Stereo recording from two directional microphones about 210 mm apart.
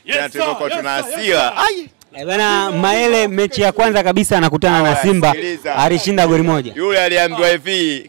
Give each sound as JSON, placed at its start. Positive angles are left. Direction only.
{"t": 0.1, "sound": "speech", "side_deg": -10}